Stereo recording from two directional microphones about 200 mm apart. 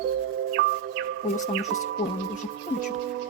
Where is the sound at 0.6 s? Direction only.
65° right (ahead or behind).